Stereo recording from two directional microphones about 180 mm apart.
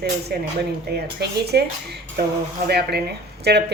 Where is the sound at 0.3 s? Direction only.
60° right (ahead or behind).